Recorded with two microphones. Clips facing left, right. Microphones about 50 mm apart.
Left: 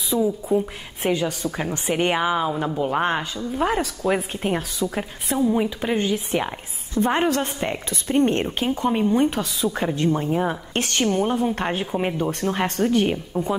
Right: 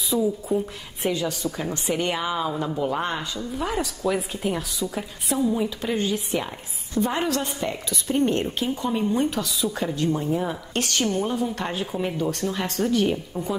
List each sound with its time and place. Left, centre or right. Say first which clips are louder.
0.1 s a sound: left 2 dB; centre
0.5 s a woman's voice: left 4 dB; centre
1.1 s a woman's voice: left 3 dB; left